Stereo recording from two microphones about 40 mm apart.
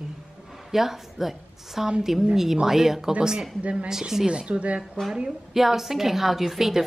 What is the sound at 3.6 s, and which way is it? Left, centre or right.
Speech, right.